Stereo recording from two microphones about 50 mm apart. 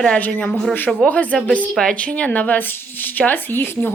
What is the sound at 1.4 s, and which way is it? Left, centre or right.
Speech, left.